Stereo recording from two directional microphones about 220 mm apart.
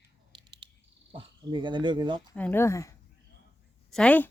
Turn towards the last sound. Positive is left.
turn(degrees=5)  # may be behind; listen again after turning